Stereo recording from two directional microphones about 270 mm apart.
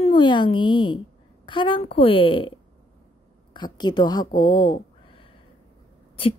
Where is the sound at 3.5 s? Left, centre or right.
Centre.